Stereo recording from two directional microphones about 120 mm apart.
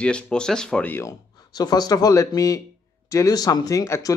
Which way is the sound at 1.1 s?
35° left (ahead or behind).